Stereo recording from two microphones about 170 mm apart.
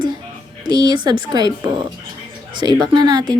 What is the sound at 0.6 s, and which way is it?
A woman's voice, 25° right (ahead or behind).